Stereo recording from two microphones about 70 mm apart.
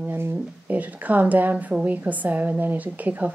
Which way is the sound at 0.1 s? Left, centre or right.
Right.